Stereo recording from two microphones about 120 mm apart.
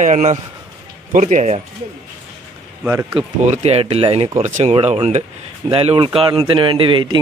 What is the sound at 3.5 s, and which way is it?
Speech, 60° right (ahead or behind).